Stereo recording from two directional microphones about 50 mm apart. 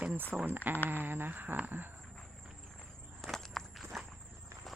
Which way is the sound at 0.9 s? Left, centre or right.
Right.